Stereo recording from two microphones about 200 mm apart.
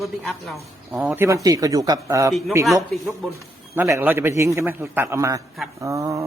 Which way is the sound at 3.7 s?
10° right (ahead or behind).